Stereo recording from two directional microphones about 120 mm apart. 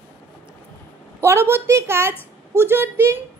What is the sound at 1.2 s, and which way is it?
A woman's voice, 20° right (ahead or behind).